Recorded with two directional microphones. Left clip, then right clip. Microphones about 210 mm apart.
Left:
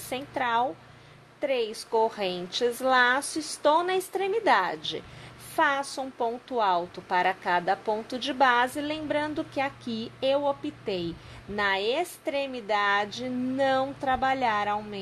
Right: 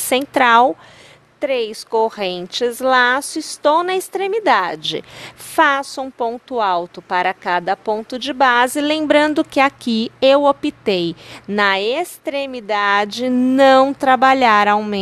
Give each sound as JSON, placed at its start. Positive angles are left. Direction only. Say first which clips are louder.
{"t": 0.1, "sound": "speech", "louder": "right 15 dB", "side_deg": -45}